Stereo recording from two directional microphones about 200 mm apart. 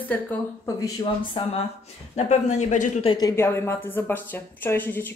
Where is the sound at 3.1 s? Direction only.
15° left (ahead or behind).